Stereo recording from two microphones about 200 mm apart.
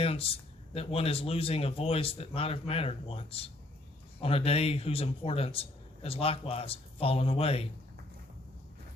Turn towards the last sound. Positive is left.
turn(degrees=30)  # may be behind; listen again after turning